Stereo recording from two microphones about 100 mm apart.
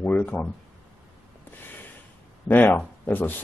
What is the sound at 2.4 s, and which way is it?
Speech, 20° left (ahead or behind).